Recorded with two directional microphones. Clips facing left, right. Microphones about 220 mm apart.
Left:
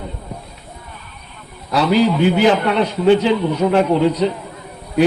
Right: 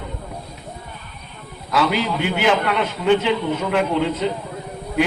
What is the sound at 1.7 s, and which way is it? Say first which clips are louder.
A man's voice: left 6 dB; 35° left (ahead or behind).